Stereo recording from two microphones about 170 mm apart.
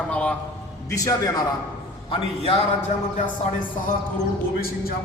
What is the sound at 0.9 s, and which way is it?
Speech, 20° left (ahead or behind).